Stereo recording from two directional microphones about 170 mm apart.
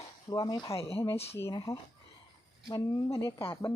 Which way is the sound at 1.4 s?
20° left (ahead or behind).